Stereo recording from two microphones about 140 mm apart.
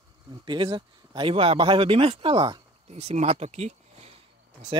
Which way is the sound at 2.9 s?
50° right (ahead or behind).